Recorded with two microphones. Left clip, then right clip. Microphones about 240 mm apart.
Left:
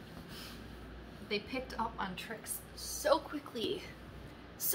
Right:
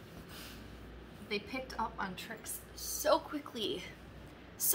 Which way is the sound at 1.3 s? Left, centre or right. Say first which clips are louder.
Left 1 dB; centre.